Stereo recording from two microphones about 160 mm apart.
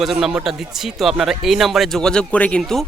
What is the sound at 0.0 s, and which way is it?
Speech, centre (ahead or behind).